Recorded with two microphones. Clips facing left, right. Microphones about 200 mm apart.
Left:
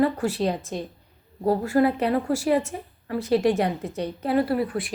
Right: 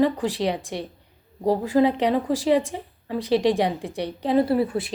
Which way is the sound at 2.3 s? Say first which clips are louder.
Right 3 dB; 90° right.